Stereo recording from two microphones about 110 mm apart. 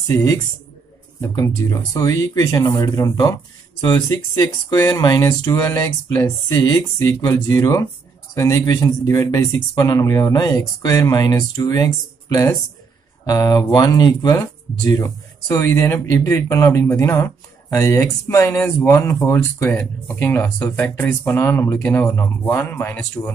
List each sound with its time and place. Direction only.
0.1 s speech: 25° left (ahead or behind)